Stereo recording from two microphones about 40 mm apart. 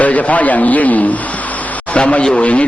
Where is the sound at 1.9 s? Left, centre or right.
Left.